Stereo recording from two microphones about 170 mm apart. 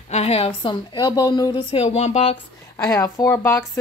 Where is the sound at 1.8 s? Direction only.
40° left (ahead or behind).